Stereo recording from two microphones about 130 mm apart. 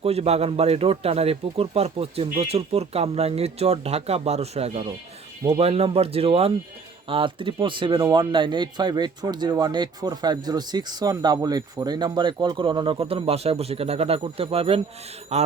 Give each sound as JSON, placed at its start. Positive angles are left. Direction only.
{"t": 0.0, "sound": "speech", "side_deg": -50}
{"t": 15.3, "sound": "a man's voice", "side_deg": -60}